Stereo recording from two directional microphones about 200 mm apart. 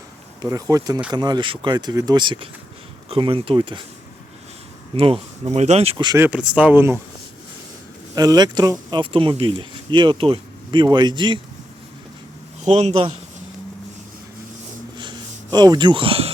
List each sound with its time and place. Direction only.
0.4 s speech: 15° right (ahead or behind)
4.9 s speech: 30° right (ahead or behind)
6.1 s speech: 5° right (ahead or behind)
8.1 s speech: 20° right (ahead or behind)
12.6 s speech: 35° right (ahead or behind)
15.5 s speech: 20° right (ahead or behind)